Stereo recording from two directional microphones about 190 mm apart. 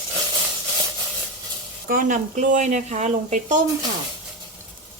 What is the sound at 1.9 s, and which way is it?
Speech, 45° right (ahead or behind).